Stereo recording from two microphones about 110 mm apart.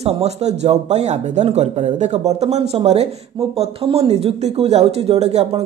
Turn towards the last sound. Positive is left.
turn(degrees=-80)